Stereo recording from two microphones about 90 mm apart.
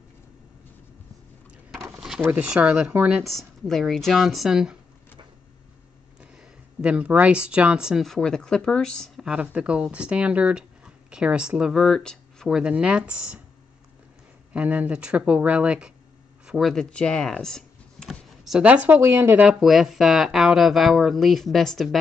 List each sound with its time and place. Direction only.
1.9 s drawer open or close: 10° right (ahead or behind)
2.4 s speech: 10° right (ahead or behind)
3.3 s speech: centre (ahead or behind)
6.8 s speech: 15° right (ahead or behind); by 9.2 s 5° left (ahead or behind)
9.2 s speech: 10° right (ahead or behind)
11.8 s speech: 5° left (ahead or behind)
12.5 s speech: 10° right (ahead or behind)
14.5 s speech: 15° right (ahead or behind)
16.4 s speech: centre (ahead or behind)
16.9 s a sound: 10° left (ahead or behind)
18.6 s speech: 15° right (ahead or behind)
19.6 s speech: 5° right (ahead or behind)